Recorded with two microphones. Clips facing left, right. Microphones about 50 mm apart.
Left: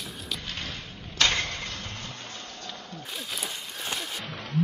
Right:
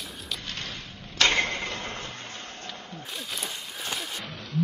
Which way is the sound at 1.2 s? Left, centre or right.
Right.